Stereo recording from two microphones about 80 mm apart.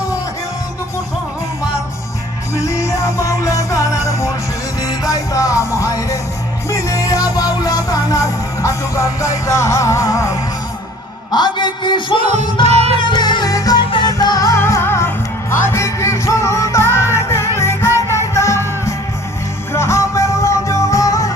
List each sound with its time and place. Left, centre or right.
2.6 s music: left
4.8 s music: left
11.3 s music: left
13.5 s music: left
14.6 s music: left